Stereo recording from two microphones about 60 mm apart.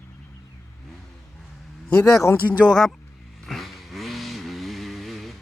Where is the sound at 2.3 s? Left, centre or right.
Left.